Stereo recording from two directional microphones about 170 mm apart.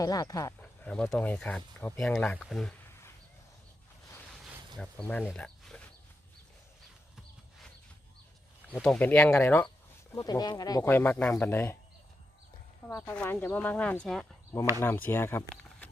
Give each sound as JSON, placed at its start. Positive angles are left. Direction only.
{"t": 0.0, "sound": "speech", "side_deg": 20}
{"t": 0.6, "sound": "speech", "side_deg": 5}
{"t": 4.8, "sound": "speech", "side_deg": 5}
{"t": 8.7, "sound": "speech", "side_deg": 5}
{"t": 10.2, "sound": "speech", "side_deg": 20}
{"t": 12.9, "sound": "speech", "side_deg": 15}